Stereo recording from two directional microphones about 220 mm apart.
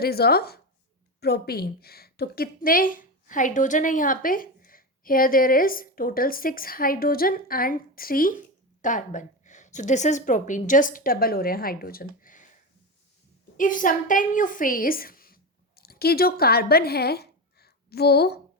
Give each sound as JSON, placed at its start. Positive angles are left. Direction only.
{"t": 0.0, "sound": "a woman's voice", "side_deg": 45}
{"t": 13.6, "sound": "a woman's voice", "side_deg": 35}